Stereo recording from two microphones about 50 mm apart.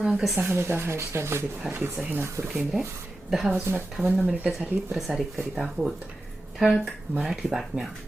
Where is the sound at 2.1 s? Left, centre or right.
Right.